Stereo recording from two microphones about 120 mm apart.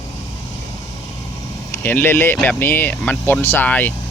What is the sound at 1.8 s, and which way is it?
Speech, 15° left (ahead or behind).